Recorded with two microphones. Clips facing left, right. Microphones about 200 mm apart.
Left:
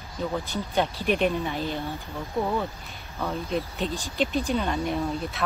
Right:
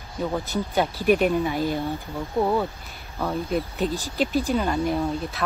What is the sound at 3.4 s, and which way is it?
Speech, 5° right (ahead or behind).